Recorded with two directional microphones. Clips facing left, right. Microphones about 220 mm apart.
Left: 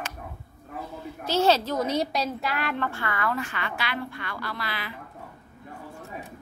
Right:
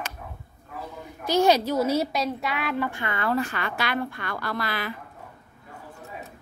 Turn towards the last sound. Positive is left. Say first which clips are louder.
# right 5 dB
turn(degrees=-45)  # may be behind; listen again after turning